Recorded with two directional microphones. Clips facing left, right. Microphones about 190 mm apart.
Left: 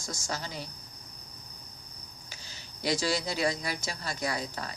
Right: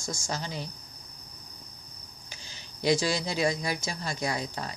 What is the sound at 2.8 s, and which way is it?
Speech, 15° right (ahead or behind).